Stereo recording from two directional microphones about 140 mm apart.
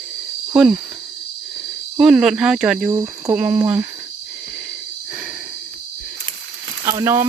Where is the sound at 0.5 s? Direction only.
5° right (ahead or behind).